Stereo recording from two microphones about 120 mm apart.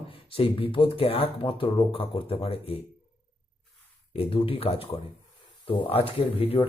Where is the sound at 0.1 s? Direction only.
50° left (ahead or behind).